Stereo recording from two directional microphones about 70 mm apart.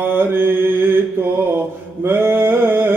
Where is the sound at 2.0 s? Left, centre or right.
Right.